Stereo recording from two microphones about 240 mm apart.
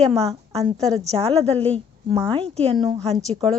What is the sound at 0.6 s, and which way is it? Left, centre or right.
Speech, centre.